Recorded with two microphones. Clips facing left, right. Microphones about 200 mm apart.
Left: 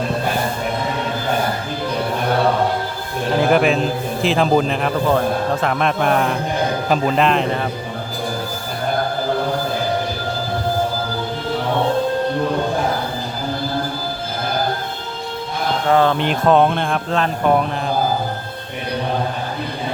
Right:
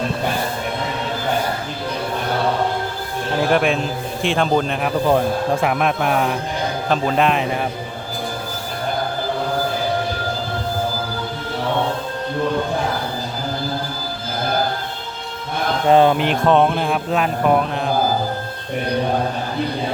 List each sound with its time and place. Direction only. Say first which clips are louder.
3.5 s speech: left 2 dB; centre (ahead or behind)
5.0 s speech: right 1 dB; 15° right (ahead or behind)
15.9 s speech: right 3 dB; 20° right (ahead or behind)
16.1 s speech: left 1 dB; centre (ahead or behind)